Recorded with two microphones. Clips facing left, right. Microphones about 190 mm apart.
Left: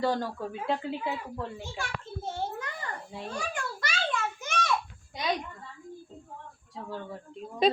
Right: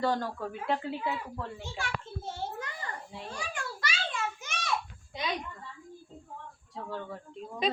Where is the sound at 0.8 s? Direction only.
20° left (ahead or behind).